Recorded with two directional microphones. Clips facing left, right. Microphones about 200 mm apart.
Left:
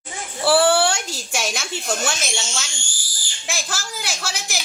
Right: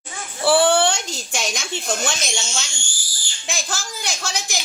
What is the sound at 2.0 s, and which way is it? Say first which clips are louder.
A child's voice: even; 5° left (ahead or behind).